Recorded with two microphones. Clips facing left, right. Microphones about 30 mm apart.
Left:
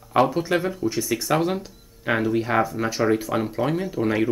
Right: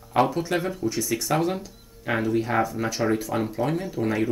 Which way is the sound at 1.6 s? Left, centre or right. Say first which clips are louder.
Left 2 dB; centre.